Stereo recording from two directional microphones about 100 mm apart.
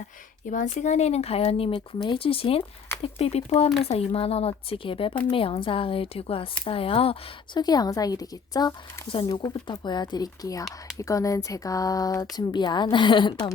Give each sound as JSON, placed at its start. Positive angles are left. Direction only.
{"t": 1.0, "sound": "speech", "side_deg": 90}
{"t": 1.7, "sound": "a woman's voice", "side_deg": 50}
{"t": 2.1, "sound": "speech", "side_deg": 65}
{"t": 3.0, "sound": "speech", "side_deg": 90}
{"t": 7.5, "sound": "speech", "side_deg": 45}
{"t": 9.0, "sound": "speech", "side_deg": 60}
{"t": 9.3, "sound": "a woman's voice", "side_deg": 45}